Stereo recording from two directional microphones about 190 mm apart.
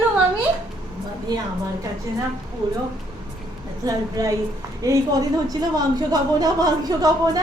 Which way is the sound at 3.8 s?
20° right (ahead or behind).